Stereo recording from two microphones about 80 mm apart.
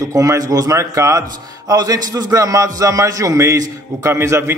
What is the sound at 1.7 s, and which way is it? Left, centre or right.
A man's voice, right.